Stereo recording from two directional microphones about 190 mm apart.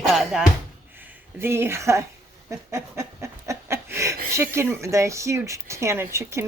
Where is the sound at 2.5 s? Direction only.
15° right (ahead or behind).